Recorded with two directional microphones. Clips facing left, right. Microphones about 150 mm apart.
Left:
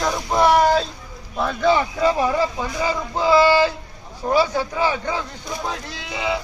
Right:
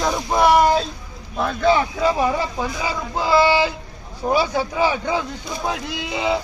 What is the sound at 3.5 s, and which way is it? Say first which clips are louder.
Speech: left 2 dB; 15° right (ahead or behind).